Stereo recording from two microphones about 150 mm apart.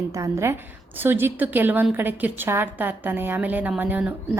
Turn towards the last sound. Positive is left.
turn(degrees=-10)  # may be behind; listen again after turning